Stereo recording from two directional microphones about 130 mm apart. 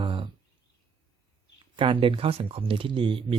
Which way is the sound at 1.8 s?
40° right (ahead or behind).